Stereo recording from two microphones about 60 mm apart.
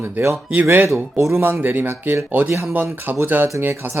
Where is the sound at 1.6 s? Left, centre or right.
Right.